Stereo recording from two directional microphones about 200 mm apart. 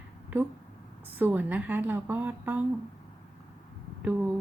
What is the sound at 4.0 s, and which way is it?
Speech, 10° right (ahead or behind).